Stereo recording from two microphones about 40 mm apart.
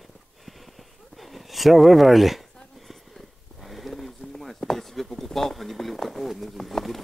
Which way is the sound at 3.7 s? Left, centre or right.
Centre.